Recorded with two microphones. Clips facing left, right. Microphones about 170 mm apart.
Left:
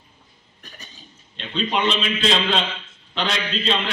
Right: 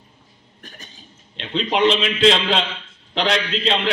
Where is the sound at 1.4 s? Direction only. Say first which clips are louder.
Right 4 dB; 85° right.